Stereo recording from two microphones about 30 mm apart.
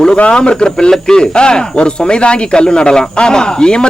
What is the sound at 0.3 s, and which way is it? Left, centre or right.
Speech, left.